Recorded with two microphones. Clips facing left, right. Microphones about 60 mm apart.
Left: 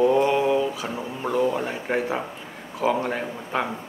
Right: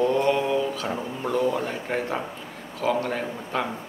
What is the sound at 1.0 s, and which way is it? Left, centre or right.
Speech, centre.